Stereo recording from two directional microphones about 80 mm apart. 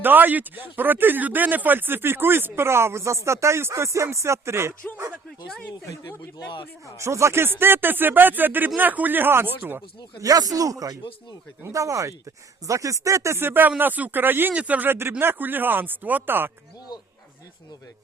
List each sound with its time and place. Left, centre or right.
0.0 s speech: right
6.9 s speech: right
10.2 s speech: right